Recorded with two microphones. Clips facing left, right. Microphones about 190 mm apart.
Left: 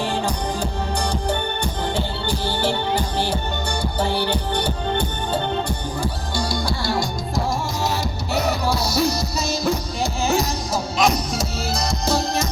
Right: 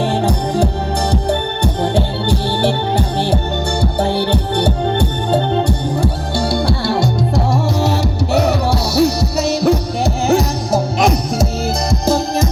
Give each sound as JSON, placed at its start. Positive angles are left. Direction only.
{"t": 0.0, "sound": "music", "side_deg": -60}
{"t": 2.5, "sound": "music", "side_deg": -60}